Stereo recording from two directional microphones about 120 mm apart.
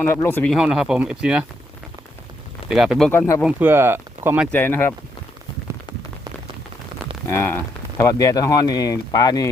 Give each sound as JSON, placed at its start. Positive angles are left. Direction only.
{"t": 0.0, "sound": "speech", "side_deg": 20}
{"t": 0.5, "sound": "speech", "side_deg": -5}
{"t": 2.6, "sound": "speech", "side_deg": -5}
{"t": 3.1, "sound": "speech", "side_deg": 20}
{"t": 3.4, "sound": "speech", "side_deg": -15}
{"t": 4.5, "sound": "speech", "side_deg": 15}
{"t": 7.3, "sound": "speech", "side_deg": 20}
{"t": 8.2, "sound": "speech", "side_deg": 30}